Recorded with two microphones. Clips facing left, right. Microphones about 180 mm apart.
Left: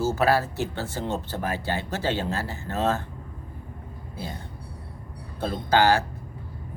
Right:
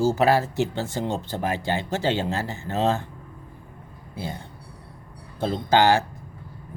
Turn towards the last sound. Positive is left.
turn(degrees=-20)  # may be behind; listen again after turning